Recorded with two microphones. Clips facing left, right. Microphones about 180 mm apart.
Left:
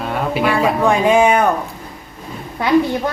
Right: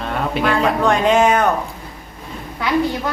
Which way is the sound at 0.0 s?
5° left (ahead or behind).